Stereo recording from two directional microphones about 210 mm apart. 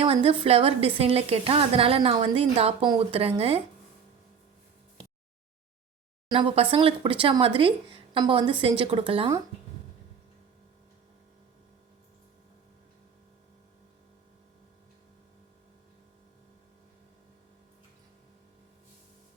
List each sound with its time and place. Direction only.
0.0 s a woman's voice: 25° right (ahead or behind)
6.2 s a woman's voice: 20° right (ahead or behind)